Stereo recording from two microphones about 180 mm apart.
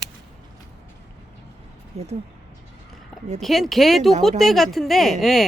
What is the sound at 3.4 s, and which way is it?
Speech, centre (ahead or behind).